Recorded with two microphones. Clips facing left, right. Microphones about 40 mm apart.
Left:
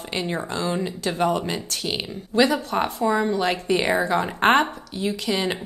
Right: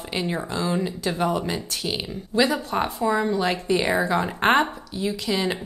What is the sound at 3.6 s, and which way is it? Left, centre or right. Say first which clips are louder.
Speech: left 1 dB; left.